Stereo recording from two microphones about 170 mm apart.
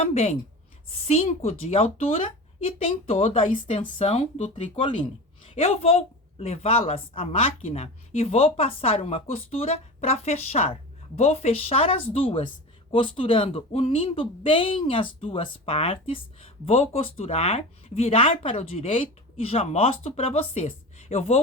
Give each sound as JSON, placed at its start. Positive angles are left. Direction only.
{"t": 0.0, "sound": "speech", "side_deg": 35}